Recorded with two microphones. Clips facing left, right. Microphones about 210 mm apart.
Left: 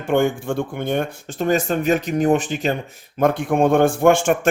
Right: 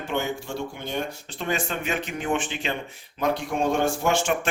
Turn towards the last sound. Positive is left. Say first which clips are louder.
# left 8 dB
turn(degrees=50)  # may be behind; listen again after turning